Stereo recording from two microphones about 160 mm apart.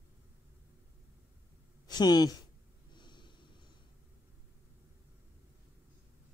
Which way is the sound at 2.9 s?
30° left (ahead or behind).